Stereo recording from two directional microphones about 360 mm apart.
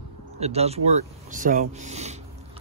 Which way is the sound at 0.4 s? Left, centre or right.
Centre.